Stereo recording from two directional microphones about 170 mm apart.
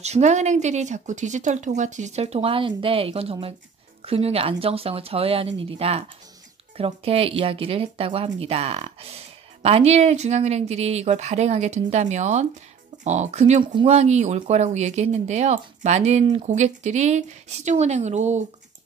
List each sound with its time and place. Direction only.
0.0 s speech: 40° right (ahead or behind)